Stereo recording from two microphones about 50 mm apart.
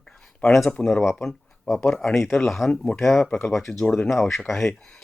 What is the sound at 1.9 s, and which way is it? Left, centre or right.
Speech, centre.